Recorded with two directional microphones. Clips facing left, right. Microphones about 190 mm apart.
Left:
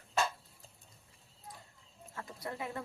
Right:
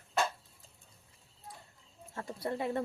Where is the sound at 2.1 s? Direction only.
30° right (ahead or behind).